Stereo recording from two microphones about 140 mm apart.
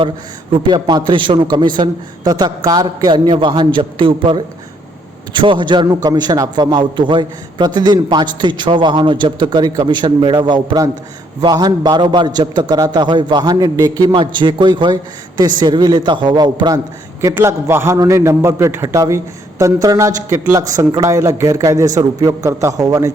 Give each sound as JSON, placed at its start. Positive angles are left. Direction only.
{"t": 0.5, "sound": "a man's voice", "side_deg": -30}
{"t": 17.2, "sound": "a man's voice", "side_deg": -20}